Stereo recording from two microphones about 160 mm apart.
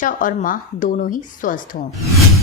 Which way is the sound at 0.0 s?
55° left (ahead or behind).